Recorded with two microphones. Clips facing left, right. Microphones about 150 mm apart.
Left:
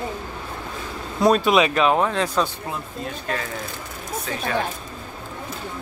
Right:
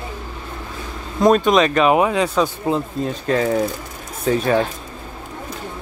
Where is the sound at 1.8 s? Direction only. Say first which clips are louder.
Right 4 dB; 5° right (ahead or behind).